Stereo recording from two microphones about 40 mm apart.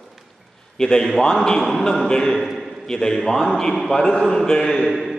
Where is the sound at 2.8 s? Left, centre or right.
Centre.